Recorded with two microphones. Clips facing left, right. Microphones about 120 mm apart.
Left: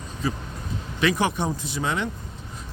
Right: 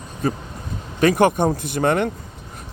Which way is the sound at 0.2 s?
50° right (ahead or behind).